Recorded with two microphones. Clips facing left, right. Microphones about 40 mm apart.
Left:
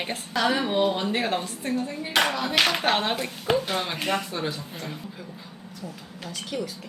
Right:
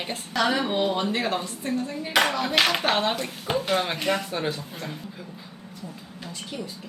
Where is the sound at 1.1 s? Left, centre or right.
Centre.